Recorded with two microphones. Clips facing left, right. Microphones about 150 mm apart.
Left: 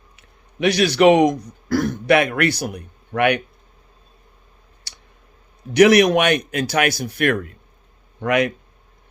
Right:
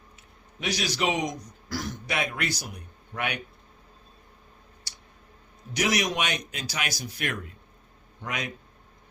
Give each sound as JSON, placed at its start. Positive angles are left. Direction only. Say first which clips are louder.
{"t": 0.2, "sound": "a man's voice", "louder": "left 16 dB", "side_deg": 65}
{"t": 4.9, "sound": "a sound", "louder": "left 6 dB", "side_deg": 65}
{"t": 5.7, "sound": "speech", "louder": "left 14 dB", "side_deg": 65}